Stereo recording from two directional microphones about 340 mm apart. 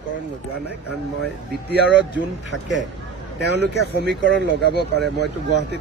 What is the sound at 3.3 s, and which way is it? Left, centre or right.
Speech, right.